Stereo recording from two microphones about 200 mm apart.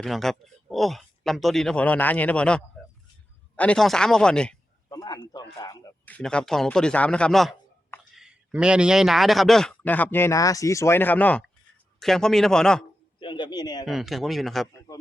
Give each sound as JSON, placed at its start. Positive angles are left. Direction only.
{"t": 0.0, "sound": "speech", "side_deg": 0}
{"t": 4.9, "sound": "a sound", "side_deg": 20}
{"t": 5.5, "sound": "speech", "side_deg": 15}
{"t": 6.1, "sound": "speech", "side_deg": 5}
{"t": 13.1, "sound": "a man's voice", "side_deg": 25}
{"t": 13.8, "sound": "speech", "side_deg": 0}